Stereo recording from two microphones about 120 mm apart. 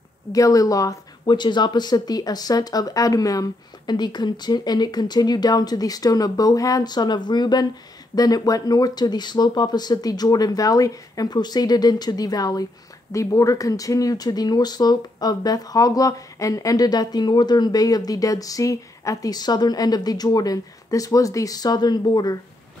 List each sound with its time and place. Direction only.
0.3 s speech: 30° left (ahead or behind)